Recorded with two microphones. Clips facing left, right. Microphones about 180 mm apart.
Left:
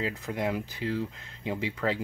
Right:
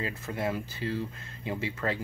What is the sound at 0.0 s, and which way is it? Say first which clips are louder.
Speech: left 2 dB; 15° left (ahead or behind).